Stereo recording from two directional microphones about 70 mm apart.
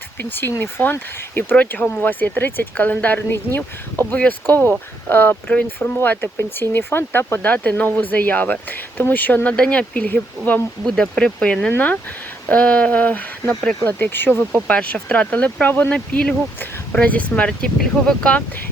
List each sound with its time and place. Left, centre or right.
0.2 s speech: left
6.6 s speech: left
7.4 s speech: centre
10.8 s speech: centre
13.5 s speech: centre
13.8 s speech: left
14.5 s speech: centre